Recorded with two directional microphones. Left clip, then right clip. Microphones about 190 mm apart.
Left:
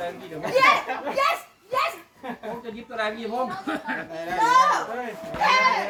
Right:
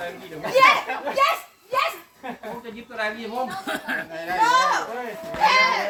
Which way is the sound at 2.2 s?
10° left (ahead or behind).